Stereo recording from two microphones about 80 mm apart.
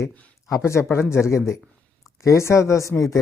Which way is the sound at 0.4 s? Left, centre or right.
Left.